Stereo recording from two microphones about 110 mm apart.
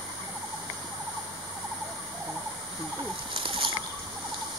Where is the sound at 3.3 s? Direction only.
55° right (ahead or behind).